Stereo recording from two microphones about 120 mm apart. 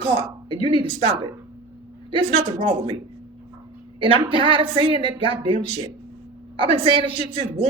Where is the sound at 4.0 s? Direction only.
45° right (ahead or behind).